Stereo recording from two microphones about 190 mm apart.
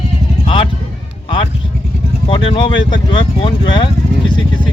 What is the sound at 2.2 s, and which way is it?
Speech, 25° left (ahead or behind).